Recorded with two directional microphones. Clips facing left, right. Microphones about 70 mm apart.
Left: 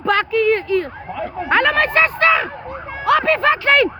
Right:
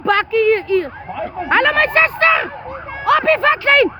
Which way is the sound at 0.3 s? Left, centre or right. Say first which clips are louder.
Right 2 dB; right.